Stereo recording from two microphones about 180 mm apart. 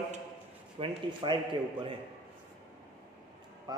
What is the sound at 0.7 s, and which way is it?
A man's voice, 25° right (ahead or behind).